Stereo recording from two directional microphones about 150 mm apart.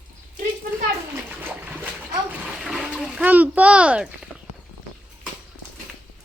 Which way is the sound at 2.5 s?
5° right (ahead or behind).